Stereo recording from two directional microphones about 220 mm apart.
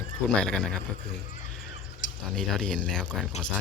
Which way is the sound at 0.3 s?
5° left (ahead or behind).